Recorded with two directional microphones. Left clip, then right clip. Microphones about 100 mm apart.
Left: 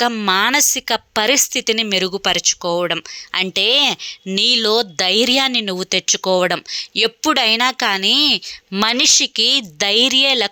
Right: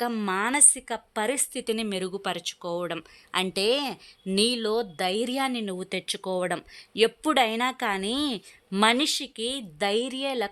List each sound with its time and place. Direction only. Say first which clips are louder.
0.3 s a woman's voice: left 12 dB; 40° left (ahead or behind)
0.5 s a woman's voice: left 9 dB; 25° left (ahead or behind)
0.9 s a woman's voice: left 12 dB; 45° left (ahead or behind)
1.5 s a woman's voice: left 12 dB; 20° left (ahead or behind)
2.0 s a woman's voice: left 13 dB; 40° left (ahead or behind)
3.3 s a woman's voice: left 10 dB; 20° left (ahead or behind)
4.3 s a woman's voice: left 10 dB; 15° left (ahead or behind); by 6.6 s 35° left (ahead or behind)
6.7 s a woman's voice: left 6 dB; 20° left (ahead or behind)
8.8 s a woman's voice: left 9 dB; 30° left (ahead or behind)